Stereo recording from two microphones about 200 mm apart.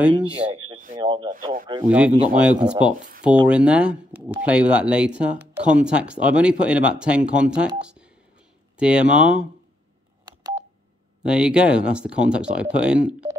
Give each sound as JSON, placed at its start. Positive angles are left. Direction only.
{"t": 0.9, "sound": "speech", "side_deg": -20}
{"t": 1.9, "sound": "speech", "side_deg": -5}
{"t": 10.2, "sound": "telephone dialing", "side_deg": -20}
{"t": 11.2, "sound": "speech", "side_deg": -5}